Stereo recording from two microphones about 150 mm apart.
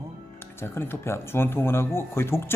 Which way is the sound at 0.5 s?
15° left (ahead or behind).